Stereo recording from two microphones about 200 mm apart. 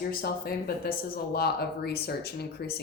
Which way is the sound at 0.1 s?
50° left (ahead or behind).